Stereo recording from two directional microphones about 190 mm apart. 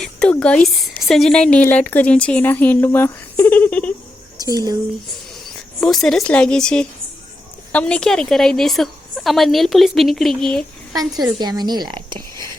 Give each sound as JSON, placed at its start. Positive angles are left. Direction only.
{"t": 0.0, "sound": "a woman's voice", "side_deg": 5}
{"t": 4.4, "sound": "speech", "side_deg": -20}
{"t": 5.8, "sound": "a woman's voice", "side_deg": 0}
{"t": 11.2, "sound": "speech", "side_deg": -20}